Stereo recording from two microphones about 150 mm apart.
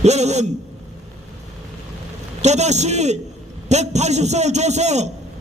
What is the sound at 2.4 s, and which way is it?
A man's voice, 50° right (ahead or behind).